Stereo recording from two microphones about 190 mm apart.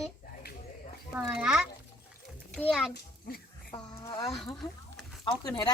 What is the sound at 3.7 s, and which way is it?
Speech, 15° left (ahead or behind).